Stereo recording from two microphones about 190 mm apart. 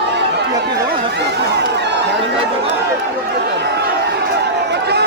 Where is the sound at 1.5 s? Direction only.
65° right (ahead or behind).